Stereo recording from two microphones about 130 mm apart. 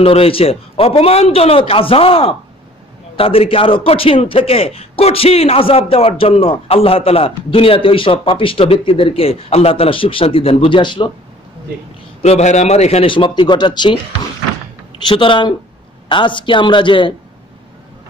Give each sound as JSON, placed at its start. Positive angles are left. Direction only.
{"t": 0.0, "sound": "a man's voice", "side_deg": 50}
{"t": 12.2, "sound": "a man's voice", "side_deg": 60}
{"t": 13.1, "sound": "a woman's voice", "side_deg": 40}
{"t": 15.0, "sound": "a woman's voice", "side_deg": 40}